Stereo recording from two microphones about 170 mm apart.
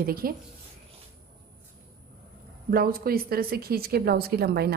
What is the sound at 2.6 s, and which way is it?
A woman's voice, 60° right (ahead or behind).